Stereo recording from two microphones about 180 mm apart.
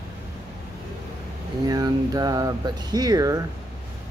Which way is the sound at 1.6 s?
20° right (ahead or behind).